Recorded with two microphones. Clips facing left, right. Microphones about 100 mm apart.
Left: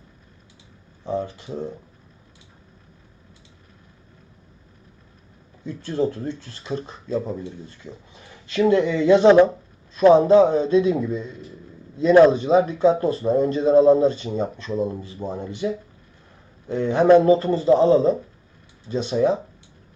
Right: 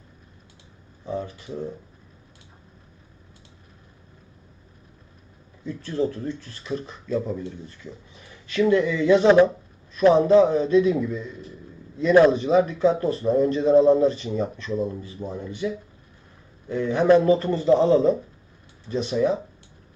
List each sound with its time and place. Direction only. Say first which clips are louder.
5.6 s speech: left 2 dB; 20° left (ahead or behind)
8.6 s speech: left 2 dB; 25° left (ahead or behind)
9.9 s a sound: left 4 dB; 20° left (ahead or behind)
10.2 s speech: left 2 dB; 25° left (ahead or behind)
17.2 s speech: left 2 dB; 30° left (ahead or behind)